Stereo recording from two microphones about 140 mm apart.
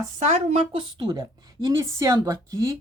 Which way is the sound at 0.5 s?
40° right (ahead or behind).